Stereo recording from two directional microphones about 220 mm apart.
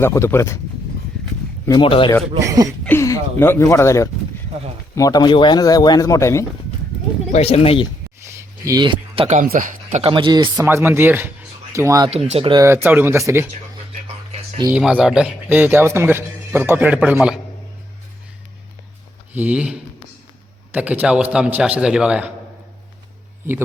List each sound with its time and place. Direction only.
0.0 s speech: 10° left (ahead or behind)
1.6 s speech: 20° left (ahead or behind)
2.4 s a man's voice: 15° right (ahead or behind)
2.8 s speech: 10° left (ahead or behind)
7.3 s speech: 30° left (ahead or behind)
8.4 s speech: 15° right (ahead or behind); by 9.7 s 40° right (ahead or behind)
9.9 s a man's voice: 25° right (ahead or behind)
12.1 s a man's voice: 25° right (ahead or behind); by 13.5 s 10° right (ahead or behind)
14.7 s a man's voice: 5° right (ahead or behind)
19.3 s a man's voice: 5° right (ahead or behind)